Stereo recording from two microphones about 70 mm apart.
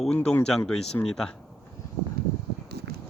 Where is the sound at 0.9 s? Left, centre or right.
Left.